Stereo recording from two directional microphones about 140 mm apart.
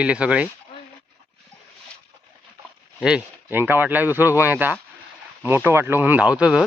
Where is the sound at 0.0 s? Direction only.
10° right (ahead or behind).